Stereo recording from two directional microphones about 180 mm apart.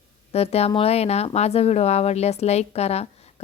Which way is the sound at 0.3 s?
35° left (ahead or behind).